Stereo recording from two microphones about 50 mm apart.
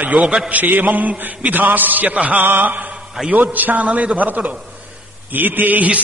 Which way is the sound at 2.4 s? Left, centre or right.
Right.